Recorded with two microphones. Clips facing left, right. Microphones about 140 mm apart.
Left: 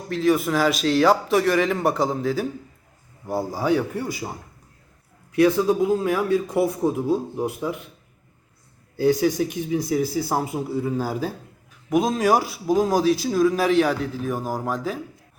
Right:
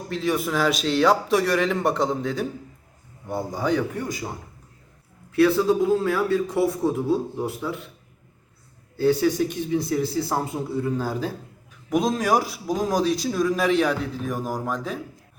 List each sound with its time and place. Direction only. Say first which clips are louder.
0.1 s a man's voice: left 4 dB; centre (ahead or behind)
5.3 s a man's voice: even; 15° left (ahead or behind)
9.0 s a man's voice: left 1 dB; 15° left (ahead or behind)